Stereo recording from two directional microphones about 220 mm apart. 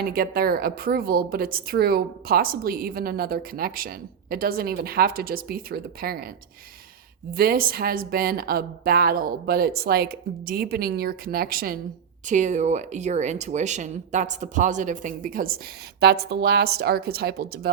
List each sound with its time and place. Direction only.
0.0 s a woman's voice: 40° right (ahead or behind)
7.3 s a woman's voice: 40° right (ahead or behind)